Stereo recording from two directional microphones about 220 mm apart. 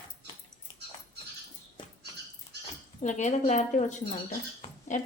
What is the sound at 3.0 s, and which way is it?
A woman's voice, 35° left (ahead or behind).